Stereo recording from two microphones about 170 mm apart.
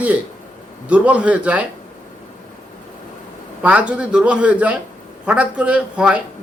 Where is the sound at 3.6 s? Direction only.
10° right (ahead or behind).